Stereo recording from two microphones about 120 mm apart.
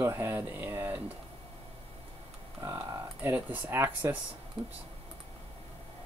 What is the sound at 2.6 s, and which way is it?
Speech, 20° right (ahead or behind).